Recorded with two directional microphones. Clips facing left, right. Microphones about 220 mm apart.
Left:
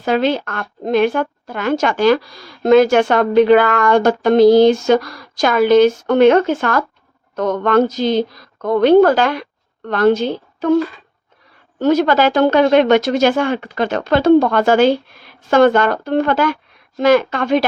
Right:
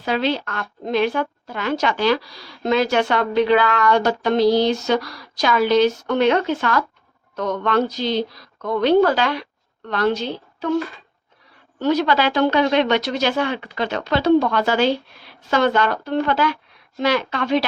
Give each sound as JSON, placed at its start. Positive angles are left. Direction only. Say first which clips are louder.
{"t": 0.0, "sound": "a woman's voice", "louder": "left 5 dB", "side_deg": 50}
{"t": 11.8, "sound": "a woman's voice", "louder": "left 5 dB", "side_deg": 50}